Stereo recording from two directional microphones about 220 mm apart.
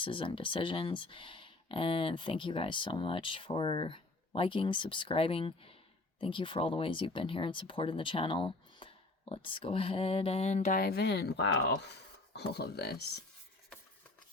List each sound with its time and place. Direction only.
0.0 s speech: 25° left (ahead or behind); by 13.1 s 50° left (ahead or behind)